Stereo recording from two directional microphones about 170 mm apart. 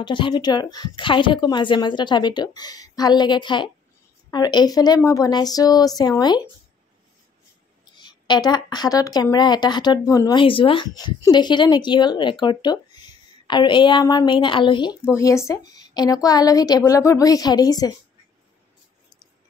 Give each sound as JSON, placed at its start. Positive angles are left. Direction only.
{"t": 0.0, "sound": "speech", "side_deg": 30}
{"t": 8.0, "sound": "speech", "side_deg": 25}
{"t": 15.1, "sound": "speech", "side_deg": 15}